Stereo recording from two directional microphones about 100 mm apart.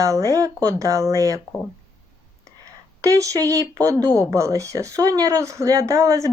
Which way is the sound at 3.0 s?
35° right (ahead or behind).